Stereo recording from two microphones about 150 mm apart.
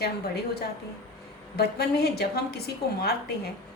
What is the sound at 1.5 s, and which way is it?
A woman's voice, 90° left.